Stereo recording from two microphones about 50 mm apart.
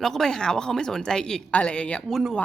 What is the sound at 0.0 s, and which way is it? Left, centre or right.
Speech, centre.